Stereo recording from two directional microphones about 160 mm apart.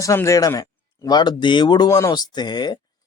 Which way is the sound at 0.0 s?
20° left (ahead or behind).